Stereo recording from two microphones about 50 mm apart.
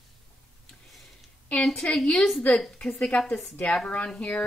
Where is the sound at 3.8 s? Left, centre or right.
Left.